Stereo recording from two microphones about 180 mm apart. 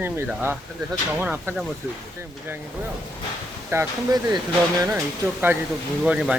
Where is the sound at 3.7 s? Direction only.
15° right (ahead or behind).